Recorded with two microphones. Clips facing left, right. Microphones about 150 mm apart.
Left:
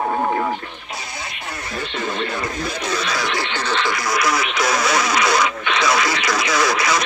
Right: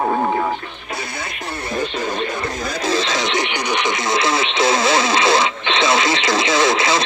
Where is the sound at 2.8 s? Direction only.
25° right (ahead or behind).